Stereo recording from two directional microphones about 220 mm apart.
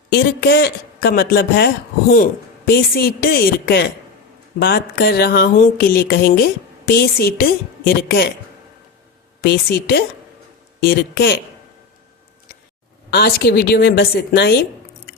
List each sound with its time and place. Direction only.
0.2 s speech: 50° left (ahead or behind)
9.4 s speech: 45° left (ahead or behind)
13.1 s speech: 45° left (ahead or behind)